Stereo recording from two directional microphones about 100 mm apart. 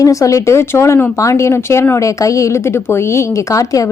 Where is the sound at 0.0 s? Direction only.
35° left (ahead or behind).